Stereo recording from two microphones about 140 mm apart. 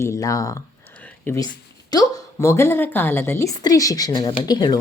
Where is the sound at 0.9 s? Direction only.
10° left (ahead or behind).